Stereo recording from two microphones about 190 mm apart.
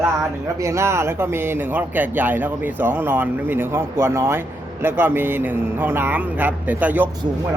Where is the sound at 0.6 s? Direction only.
15° right (ahead or behind).